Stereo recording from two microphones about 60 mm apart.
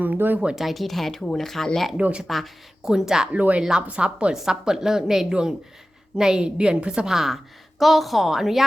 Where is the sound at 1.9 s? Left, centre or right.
Centre.